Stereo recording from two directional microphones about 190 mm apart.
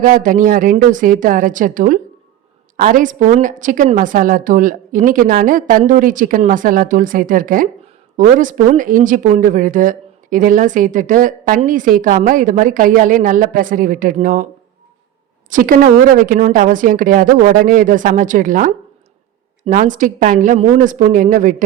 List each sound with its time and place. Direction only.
0.0 s speech: 45° right (ahead or behind)
15.4 s speech: 45° right (ahead or behind)